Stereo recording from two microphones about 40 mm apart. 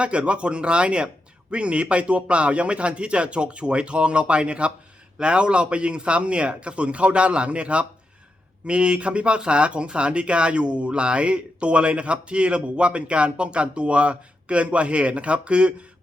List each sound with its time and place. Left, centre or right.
0.0 s speech: right